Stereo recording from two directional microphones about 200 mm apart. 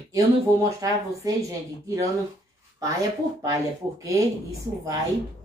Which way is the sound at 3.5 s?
15° right (ahead or behind).